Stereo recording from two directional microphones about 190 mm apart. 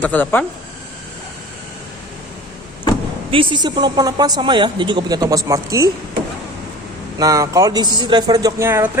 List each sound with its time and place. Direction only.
0.0 s speech: 10° left (ahead or behind)
3.3 s speech: 25° right (ahead or behind)
7.2 s speech: 20° right (ahead or behind)